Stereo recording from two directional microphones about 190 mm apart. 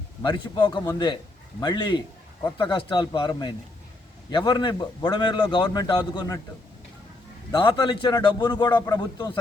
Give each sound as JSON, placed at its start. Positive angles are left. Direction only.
{"t": 0.2, "sound": "a man's voice", "side_deg": 25}
{"t": 7.5, "sound": "a man's voice", "side_deg": 25}